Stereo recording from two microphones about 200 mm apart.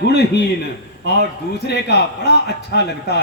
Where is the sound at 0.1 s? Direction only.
55° left (ahead or behind).